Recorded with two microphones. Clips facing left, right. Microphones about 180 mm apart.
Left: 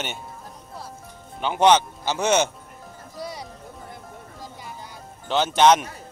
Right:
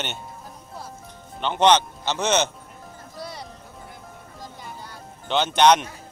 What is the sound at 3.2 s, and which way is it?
Music, 10° left (ahead or behind).